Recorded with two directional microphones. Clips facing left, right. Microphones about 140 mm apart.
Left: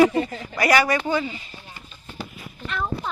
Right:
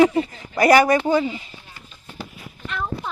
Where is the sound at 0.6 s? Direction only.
40° right (ahead or behind).